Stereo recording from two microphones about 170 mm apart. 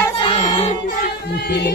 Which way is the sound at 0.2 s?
30° left (ahead or behind).